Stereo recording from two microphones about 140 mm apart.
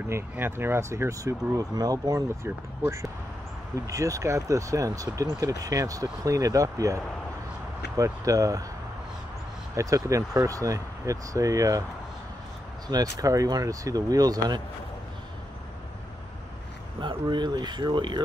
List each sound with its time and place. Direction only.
0.1 s speech: 15° right (ahead or behind)
8.0 s speech: 25° right (ahead or behind)
9.8 s speech: 25° right (ahead or behind)
12.8 s speech: 25° right (ahead or behind)
17.0 s speech: 35° right (ahead or behind)